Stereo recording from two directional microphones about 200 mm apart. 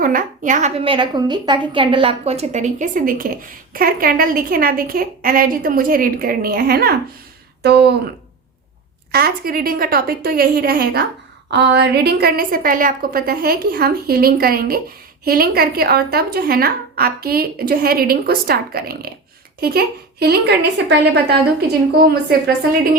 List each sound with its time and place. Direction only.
0.0 s a woman's voice: 45° right (ahead or behind)
0.9 s a woman's voice: 25° right (ahead or behind); by 7.9 s 55° right (ahead or behind)
9.1 s a woman's voice: 50° right (ahead or behind)